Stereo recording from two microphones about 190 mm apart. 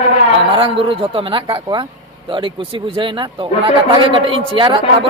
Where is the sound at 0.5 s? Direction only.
25° right (ahead or behind).